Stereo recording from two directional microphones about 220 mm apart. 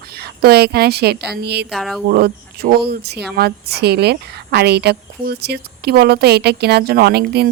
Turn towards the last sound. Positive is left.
turn(degrees=-45)  # may be behind; listen again after turning